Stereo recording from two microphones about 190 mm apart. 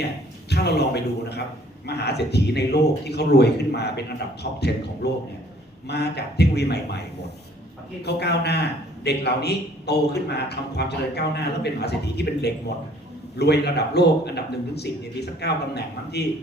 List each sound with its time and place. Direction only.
0.5 s a man's voice: 60° left (ahead or behind)
8.0 s a man's voice: 60° left (ahead or behind)